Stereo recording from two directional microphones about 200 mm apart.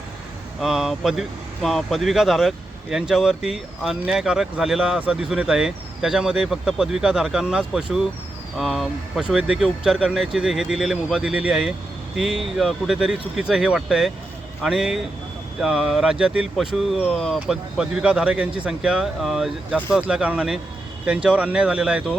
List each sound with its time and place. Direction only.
0.6 s speech: centre (ahead or behind)